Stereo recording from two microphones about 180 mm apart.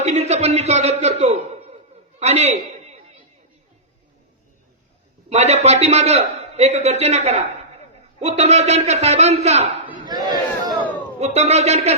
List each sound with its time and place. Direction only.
0.0 s a man's voice: 40° right (ahead or behind)
2.1 s a sound: 40° right (ahead or behind)
5.3 s a man's voice: 40° right (ahead or behind)
10.1 s battle cry: 20° right (ahead or behind)
11.2 s a man's voice: 35° right (ahead or behind)